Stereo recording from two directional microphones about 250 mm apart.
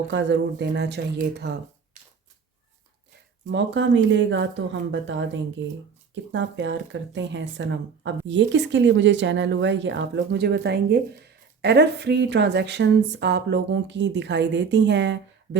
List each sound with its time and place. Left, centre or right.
0.1 s speech: right
3.4 s speech: right